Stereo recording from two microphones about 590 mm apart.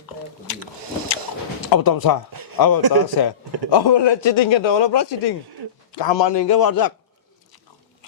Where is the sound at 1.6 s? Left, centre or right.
Left.